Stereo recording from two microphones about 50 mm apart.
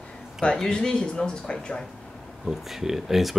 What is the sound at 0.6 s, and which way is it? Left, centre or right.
Speech, centre.